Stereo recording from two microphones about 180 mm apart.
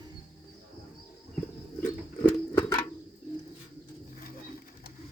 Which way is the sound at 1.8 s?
15° left (ahead or behind).